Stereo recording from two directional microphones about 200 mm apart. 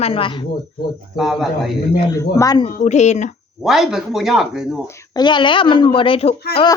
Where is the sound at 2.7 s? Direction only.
35° left (ahead or behind).